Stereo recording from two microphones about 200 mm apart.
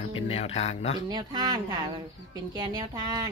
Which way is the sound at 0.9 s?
20° right (ahead or behind).